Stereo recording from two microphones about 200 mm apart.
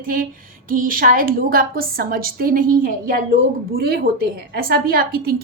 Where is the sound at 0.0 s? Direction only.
45° right (ahead or behind).